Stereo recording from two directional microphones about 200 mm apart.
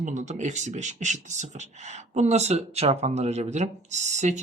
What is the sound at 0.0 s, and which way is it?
Speech, 35° right (ahead or behind).